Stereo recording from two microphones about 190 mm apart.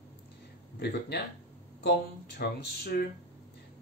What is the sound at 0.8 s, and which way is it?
Speech, 60° left (ahead or behind).